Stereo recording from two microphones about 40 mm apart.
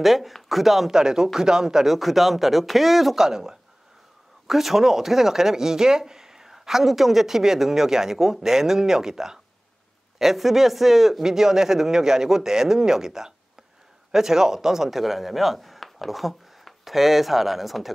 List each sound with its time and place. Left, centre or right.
0.0 s speech: centre
2.0 s speech: centre
3.3 s speech: centre